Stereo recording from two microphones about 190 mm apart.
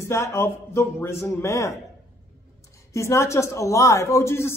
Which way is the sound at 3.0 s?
15° left (ahead or behind).